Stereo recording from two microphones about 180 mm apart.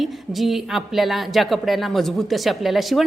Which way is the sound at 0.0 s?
Centre (ahead or behind).